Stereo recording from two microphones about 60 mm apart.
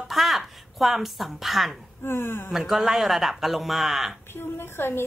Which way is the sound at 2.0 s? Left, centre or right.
Left.